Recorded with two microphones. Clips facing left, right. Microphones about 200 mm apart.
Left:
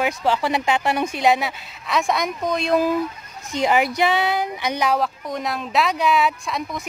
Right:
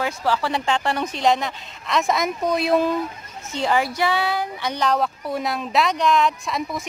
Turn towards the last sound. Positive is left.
turn(degrees=0)  # may be behind; listen again after turning